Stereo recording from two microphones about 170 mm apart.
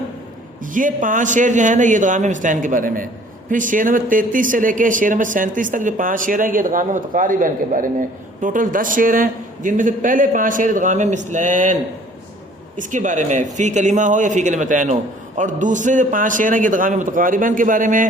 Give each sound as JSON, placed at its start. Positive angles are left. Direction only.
{"t": 0.6, "sound": "speech", "side_deg": -50}
{"t": 12.8, "sound": "speech", "side_deg": -50}